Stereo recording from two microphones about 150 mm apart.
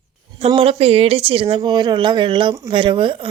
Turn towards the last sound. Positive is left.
turn(degrees=-35)  # may be behind; listen again after turning